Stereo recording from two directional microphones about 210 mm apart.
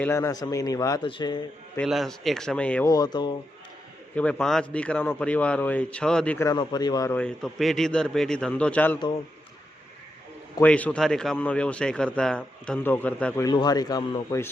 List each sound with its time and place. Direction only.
0.0 s speech: 15° left (ahead or behind)
1.8 s speech: centre (ahead or behind)
2.9 s speech: 20° left (ahead or behind)
4.1 s speech: 5° left (ahead or behind)
10.6 s speech: 5° left (ahead or behind)